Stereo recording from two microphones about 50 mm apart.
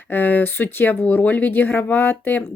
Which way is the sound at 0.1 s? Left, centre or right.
Left.